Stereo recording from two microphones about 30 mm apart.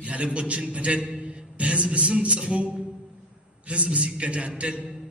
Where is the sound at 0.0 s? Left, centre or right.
Right.